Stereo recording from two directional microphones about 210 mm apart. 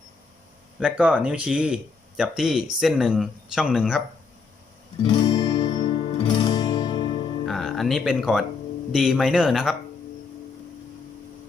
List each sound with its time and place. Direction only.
0.8 s speech: 5° right (ahead or behind)
5.1 s music: 20° left (ahead or behind)
7.4 s speech: centre (ahead or behind)